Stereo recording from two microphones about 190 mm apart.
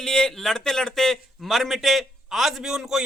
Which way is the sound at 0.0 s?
5° left (ahead or behind).